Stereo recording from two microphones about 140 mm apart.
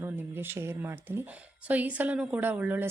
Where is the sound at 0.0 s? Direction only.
15° right (ahead or behind).